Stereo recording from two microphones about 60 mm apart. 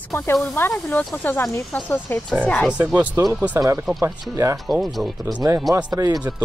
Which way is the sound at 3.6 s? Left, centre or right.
Right.